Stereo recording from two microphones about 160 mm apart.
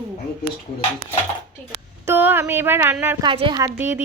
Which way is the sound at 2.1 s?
15° right (ahead or behind).